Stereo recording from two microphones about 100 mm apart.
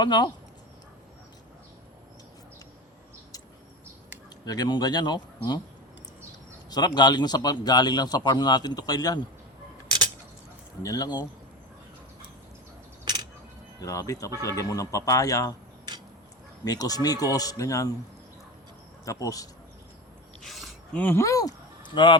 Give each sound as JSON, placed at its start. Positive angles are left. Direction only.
{"t": 0.0, "sound": "a man's voice", "side_deg": 50}
{"t": 4.4, "sound": "a man's voice", "side_deg": 40}
{"t": 6.7, "sound": "a man's voice", "side_deg": 45}
{"t": 10.8, "sound": "speech", "side_deg": 40}
{"t": 13.8, "sound": "speech", "side_deg": 35}
{"t": 16.6, "sound": "speech", "side_deg": 40}
{"t": 19.0, "sound": "speech", "side_deg": 35}
{"t": 20.4, "sound": "a sound", "side_deg": 0}
{"t": 20.9, "sound": "speech", "side_deg": 20}
{"t": 21.9, "sound": "a man's voice", "side_deg": 50}